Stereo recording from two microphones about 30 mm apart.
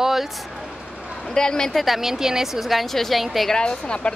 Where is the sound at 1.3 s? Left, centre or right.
Left.